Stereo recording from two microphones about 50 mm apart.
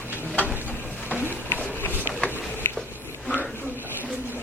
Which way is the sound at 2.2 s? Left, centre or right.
Left.